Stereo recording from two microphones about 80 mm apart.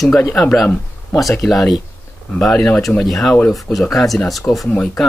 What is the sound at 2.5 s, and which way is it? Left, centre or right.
Speech, centre.